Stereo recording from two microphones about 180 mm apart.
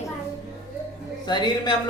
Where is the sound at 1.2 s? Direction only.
25° left (ahead or behind).